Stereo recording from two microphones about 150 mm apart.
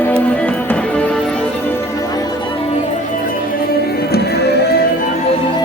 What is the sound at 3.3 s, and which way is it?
Music, 90° left.